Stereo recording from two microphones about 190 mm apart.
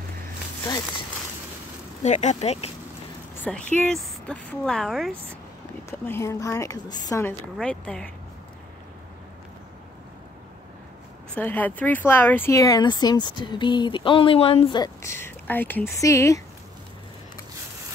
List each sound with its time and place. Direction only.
2.0 s speech: 35° left (ahead or behind)
3.7 s speech: 5° left (ahead or behind)
5.9 s speech: 15° left (ahead or behind)
7.5 s speech: 5° left (ahead or behind)
11.3 s speech: 10° left (ahead or behind)